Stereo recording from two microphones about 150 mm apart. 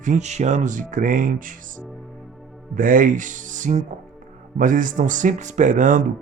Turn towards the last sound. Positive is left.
turn(degrees=-60)  # may be behind; listen again after turning